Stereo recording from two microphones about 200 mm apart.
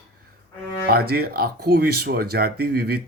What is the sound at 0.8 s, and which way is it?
Speech, 50° right (ahead or behind).